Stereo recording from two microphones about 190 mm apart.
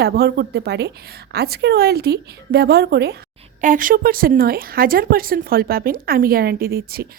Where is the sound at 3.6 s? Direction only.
45° right (ahead or behind).